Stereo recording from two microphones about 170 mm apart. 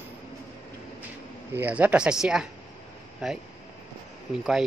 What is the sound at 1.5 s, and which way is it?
Speech, 10° right (ahead or behind).